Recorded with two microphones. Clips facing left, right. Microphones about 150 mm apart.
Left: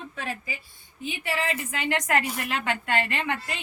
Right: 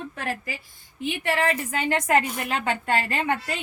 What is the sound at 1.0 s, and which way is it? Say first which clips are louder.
Speech: right 5 dB; 70° right (ahead or behind).